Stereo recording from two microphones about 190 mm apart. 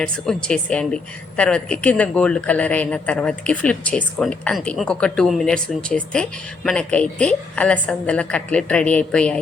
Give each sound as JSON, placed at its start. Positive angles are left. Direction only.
{"t": 0.0, "sound": "a woman's voice", "side_deg": 5}